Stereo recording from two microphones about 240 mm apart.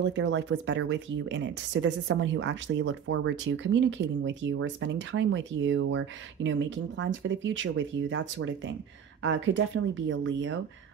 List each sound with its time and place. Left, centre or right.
0.0 s speech: right